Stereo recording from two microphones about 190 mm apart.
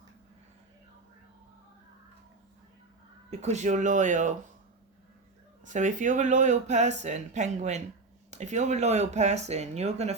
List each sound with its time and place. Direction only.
3.2 s speech: 35° right (ahead or behind)
5.6 s speech: 40° right (ahead or behind)